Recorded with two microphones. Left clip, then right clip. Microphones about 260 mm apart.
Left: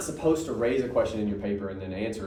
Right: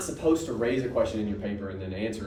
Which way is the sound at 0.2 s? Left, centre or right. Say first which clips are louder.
Even; left.